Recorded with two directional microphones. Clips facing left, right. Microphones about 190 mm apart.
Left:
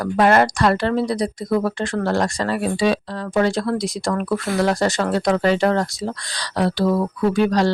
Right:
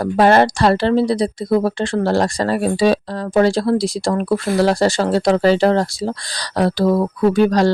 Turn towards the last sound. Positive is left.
turn(degrees=-40)  # may be behind; listen again after turning